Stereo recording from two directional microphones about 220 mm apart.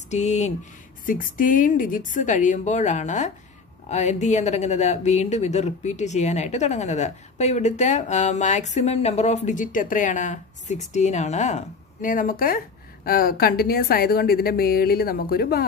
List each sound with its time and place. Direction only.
0.1 s speech: 30° left (ahead or behind)